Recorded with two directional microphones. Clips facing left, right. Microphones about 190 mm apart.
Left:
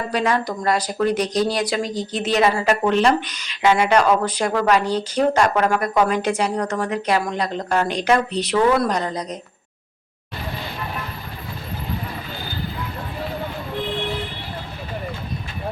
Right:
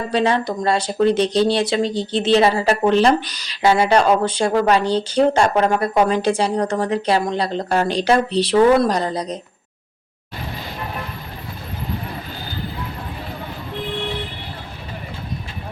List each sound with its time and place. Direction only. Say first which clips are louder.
0.1 s speech: right 3 dB; 30° right (ahead or behind)